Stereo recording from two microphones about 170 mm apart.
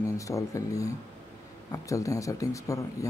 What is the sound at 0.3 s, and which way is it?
A man's voice, 20° left (ahead or behind).